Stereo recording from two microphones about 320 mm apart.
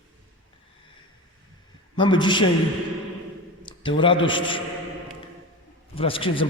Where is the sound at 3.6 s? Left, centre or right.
Centre.